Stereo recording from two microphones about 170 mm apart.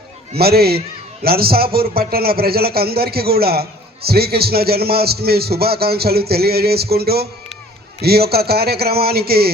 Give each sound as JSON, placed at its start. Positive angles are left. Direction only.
{"t": 0.3, "sound": "a man's voice", "side_deg": -65}